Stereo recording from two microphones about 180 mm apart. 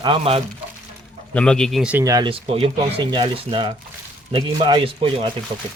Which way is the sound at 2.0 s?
20° right (ahead or behind).